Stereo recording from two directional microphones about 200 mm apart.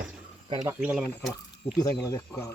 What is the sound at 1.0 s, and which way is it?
Speech, 10° left (ahead or behind).